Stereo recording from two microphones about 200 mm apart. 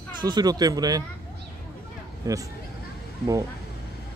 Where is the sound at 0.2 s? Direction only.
20° right (ahead or behind).